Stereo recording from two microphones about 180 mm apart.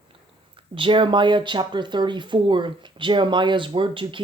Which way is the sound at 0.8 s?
30° right (ahead or behind).